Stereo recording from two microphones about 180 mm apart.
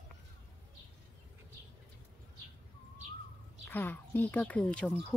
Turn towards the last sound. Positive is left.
turn(degrees=5)  # may be behind; listen again after turning